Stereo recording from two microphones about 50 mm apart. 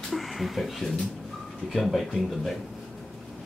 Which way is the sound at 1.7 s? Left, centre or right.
Centre.